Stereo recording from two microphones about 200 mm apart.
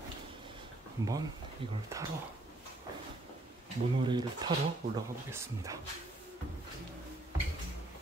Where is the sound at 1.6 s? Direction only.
25° right (ahead or behind).